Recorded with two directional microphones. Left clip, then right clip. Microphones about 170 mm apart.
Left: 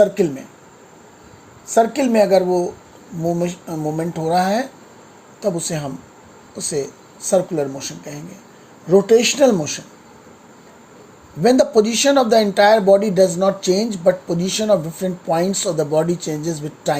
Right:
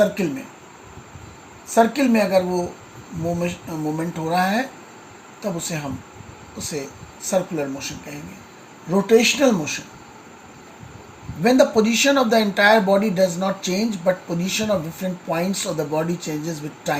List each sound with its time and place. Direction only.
1.7 s speech: 70° left (ahead or behind)
11.4 s speech: 65° left (ahead or behind)